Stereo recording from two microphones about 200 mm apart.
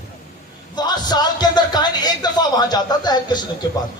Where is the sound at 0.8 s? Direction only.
20° left (ahead or behind).